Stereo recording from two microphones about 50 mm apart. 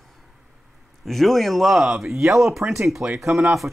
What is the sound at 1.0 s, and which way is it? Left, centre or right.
Speech, centre.